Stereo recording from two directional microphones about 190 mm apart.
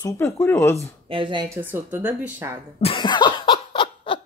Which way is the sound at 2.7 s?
30° left (ahead or behind).